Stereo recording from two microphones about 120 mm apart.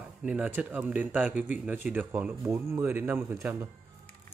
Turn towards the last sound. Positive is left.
turn(degrees=-20)  # may be behind; listen again after turning